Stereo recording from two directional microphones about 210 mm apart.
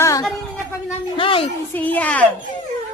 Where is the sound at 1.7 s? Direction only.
5° left (ahead or behind).